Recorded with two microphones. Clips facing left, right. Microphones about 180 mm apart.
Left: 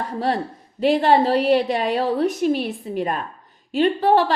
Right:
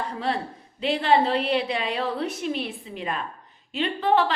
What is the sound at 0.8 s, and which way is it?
A woman's voice, 45° left (ahead or behind).